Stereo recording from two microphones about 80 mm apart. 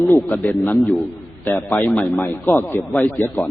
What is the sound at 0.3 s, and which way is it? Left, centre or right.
A man's voice, left.